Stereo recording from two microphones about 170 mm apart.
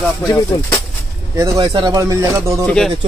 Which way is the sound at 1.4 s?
20° right (ahead or behind).